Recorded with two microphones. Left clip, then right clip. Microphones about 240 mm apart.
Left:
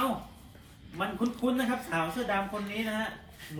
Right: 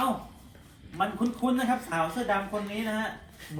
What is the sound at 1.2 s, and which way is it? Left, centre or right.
Speech, centre.